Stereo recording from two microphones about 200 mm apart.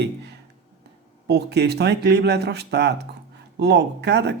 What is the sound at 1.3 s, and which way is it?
Speech, 55° right (ahead or behind).